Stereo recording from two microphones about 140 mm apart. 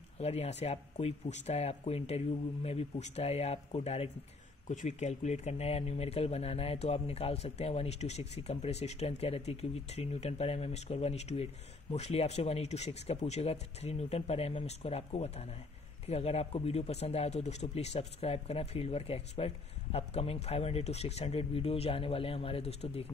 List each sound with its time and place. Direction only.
0.2 s speech: 50° left (ahead or behind)